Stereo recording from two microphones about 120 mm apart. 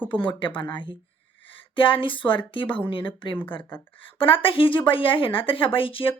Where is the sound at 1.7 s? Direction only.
45° left (ahead or behind).